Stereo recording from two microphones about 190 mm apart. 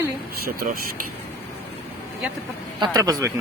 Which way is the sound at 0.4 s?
50° right (ahead or behind).